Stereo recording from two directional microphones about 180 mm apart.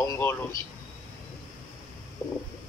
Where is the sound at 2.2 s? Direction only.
20° left (ahead or behind).